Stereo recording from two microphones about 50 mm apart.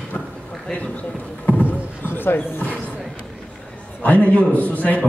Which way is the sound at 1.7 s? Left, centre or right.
Left.